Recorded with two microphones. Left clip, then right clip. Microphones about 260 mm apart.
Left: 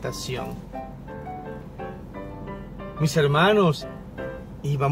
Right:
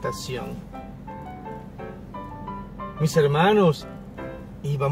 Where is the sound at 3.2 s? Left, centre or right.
Centre.